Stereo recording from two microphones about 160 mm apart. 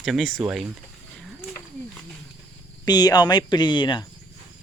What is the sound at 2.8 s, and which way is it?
Speech, 25° left (ahead or behind).